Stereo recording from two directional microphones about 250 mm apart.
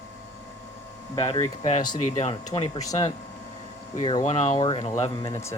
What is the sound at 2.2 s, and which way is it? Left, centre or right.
Speech, left.